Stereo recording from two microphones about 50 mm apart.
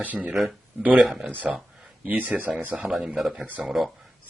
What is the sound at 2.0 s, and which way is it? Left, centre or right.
Speech, right.